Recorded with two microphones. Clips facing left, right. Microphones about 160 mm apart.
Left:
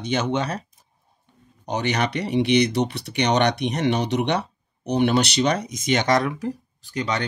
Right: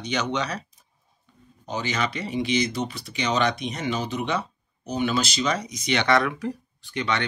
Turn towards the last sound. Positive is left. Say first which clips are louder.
# left 1 dB
turn(degrees=35)  # may be behind; listen again after turning